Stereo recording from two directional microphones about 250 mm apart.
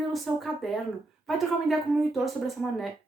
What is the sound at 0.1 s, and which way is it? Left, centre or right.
Speech, centre.